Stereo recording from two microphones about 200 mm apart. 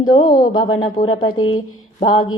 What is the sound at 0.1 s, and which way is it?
Speech, 20° left (ahead or behind).